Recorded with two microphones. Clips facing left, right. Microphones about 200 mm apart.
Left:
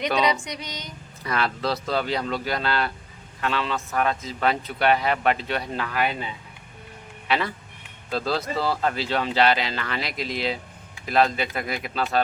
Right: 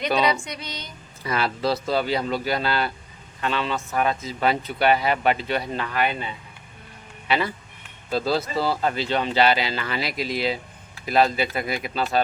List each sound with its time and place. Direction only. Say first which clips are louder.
0.1 s speech: right 2 dB; centre (ahead or behind)
0.4 s female singing: even; 15° left (ahead or behind)
1.2 s speech: right 2 dB; 5° right (ahead or behind)